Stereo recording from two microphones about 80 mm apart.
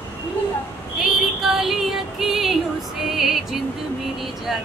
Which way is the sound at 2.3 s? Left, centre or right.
Centre.